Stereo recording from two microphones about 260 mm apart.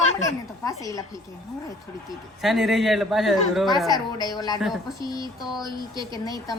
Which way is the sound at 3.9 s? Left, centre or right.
Centre.